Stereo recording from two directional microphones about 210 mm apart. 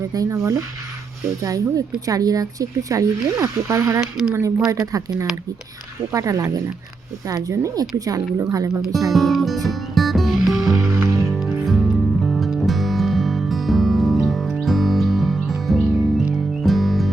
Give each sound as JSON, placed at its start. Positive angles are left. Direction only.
{"t": 0.1, "sound": "speech", "side_deg": -15}
{"t": 8.8, "sound": "speech", "side_deg": 0}
{"t": 9.6, "sound": "music", "side_deg": 0}